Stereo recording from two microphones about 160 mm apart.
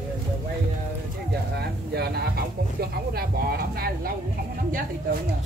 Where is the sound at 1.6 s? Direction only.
85° right.